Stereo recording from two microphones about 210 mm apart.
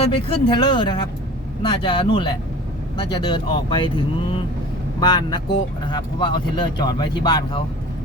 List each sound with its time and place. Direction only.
0.0 s speech: 25° left (ahead or behind)